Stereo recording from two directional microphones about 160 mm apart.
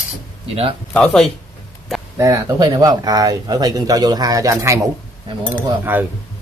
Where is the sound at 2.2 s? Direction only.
25° right (ahead or behind).